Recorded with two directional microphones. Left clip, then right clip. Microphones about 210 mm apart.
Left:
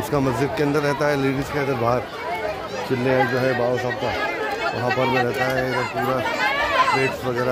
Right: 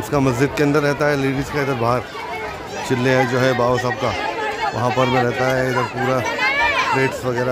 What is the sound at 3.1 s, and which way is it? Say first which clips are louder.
Speech: right 3 dB; 10° right (ahead or behind).